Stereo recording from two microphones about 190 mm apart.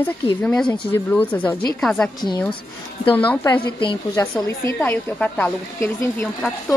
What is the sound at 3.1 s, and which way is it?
Speech, 10° left (ahead or behind).